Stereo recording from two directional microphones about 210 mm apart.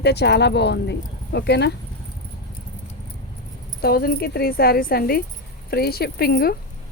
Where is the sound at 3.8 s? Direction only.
45° left (ahead or behind).